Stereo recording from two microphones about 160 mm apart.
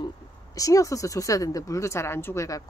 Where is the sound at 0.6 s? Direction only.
20° left (ahead or behind).